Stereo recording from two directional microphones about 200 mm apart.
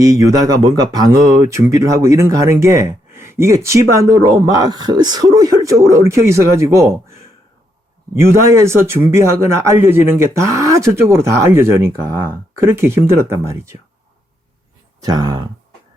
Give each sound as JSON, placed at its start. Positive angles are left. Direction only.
{"t": 0.0, "sound": "speech", "side_deg": -15}
{"t": 8.1, "sound": "speech", "side_deg": -15}
{"t": 15.0, "sound": "speech", "side_deg": -20}